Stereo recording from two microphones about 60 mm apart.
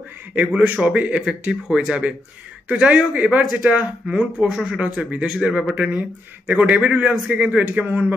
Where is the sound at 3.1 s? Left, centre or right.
Right.